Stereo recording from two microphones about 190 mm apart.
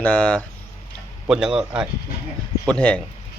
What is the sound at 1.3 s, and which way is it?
Speech, 5° right (ahead or behind).